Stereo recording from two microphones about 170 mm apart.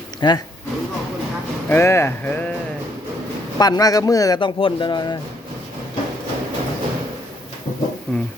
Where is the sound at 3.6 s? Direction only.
20° left (ahead or behind).